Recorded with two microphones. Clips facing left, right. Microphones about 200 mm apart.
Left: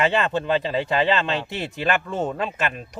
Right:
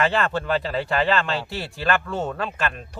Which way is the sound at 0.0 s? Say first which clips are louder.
Left 1 dB; 20° left (ahead or behind).